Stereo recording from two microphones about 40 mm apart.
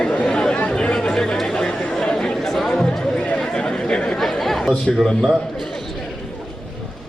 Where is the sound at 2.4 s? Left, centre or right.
Centre.